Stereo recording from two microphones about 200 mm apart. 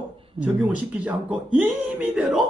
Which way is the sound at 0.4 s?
5° right (ahead or behind).